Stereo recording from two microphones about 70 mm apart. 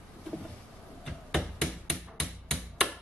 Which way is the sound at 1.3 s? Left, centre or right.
Centre.